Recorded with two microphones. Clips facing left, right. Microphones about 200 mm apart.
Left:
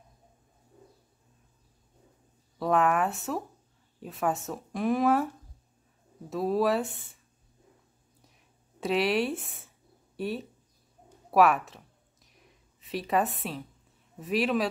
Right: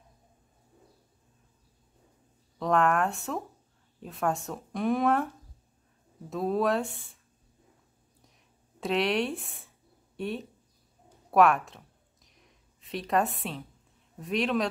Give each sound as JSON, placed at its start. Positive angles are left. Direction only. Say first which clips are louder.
{"t": 2.6, "sound": "speech", "louder": "even", "side_deg": 5}
{"t": 6.3, "sound": "speech", "louder": "left 1 dB", "side_deg": 5}
{"t": 8.7, "sound": "speech", "louder": "left 1 dB", "side_deg": 0}
{"t": 12.9, "sound": "speech", "louder": "even", "side_deg": 5}